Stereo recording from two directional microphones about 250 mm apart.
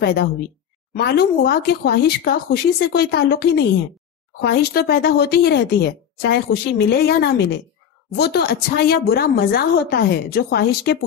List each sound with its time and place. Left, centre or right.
0.0 s speech: left